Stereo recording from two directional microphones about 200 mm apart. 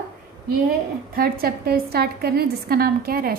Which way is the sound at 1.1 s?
45° right (ahead or behind).